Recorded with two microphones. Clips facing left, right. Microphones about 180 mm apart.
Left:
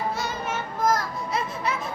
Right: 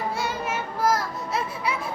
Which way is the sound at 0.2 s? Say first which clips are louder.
Right 1 dB; 5° right (ahead or behind).